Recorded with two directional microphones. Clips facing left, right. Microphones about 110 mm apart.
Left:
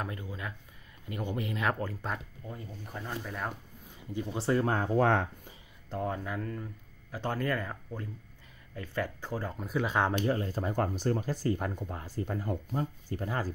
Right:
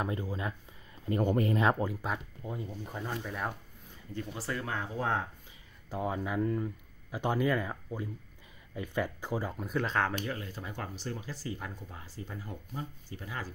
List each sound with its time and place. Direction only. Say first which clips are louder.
0.0 s speech: right 4 dB; 25° right (ahead or behind)
1.0 s speech: right 7 dB; 40° right (ahead or behind)
1.6 s speech: right 3 dB; 20° right (ahead or behind)
3.0 s speech: even; 5° right (ahead or behind)
4.1 s speech: left 4 dB; 15° left (ahead or behind)
4.4 s speech: left 9 dB; 30° left (ahead or behind)
4.9 s speech: left 6 dB; 70° left (ahead or behind)
5.9 s speech: even; 10° right (ahead or behind)
9.5 s speech: left 1 dB; centre (ahead or behind)
10.2 s speech: left 8 dB; 35° left (ahead or behind)